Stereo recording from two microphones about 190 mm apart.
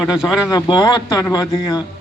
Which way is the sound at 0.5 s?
25° left (ahead or behind).